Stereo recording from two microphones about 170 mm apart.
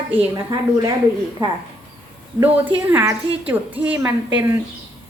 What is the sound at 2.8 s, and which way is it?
A woman's voice, 10° right (ahead or behind).